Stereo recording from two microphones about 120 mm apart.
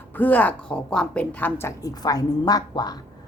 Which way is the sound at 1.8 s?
30° left (ahead or behind).